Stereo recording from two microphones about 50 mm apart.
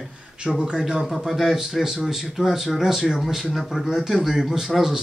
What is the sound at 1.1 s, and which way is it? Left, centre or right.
Speech, centre.